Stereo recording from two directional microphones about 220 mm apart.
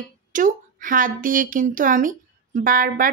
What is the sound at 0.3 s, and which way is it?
A woman's voice, 35° right (ahead or behind).